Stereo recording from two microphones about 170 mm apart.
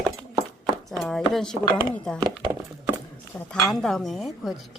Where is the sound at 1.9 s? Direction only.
5° left (ahead or behind).